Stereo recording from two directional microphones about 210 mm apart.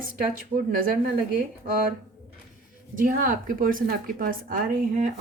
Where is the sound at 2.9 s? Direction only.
40° right (ahead or behind).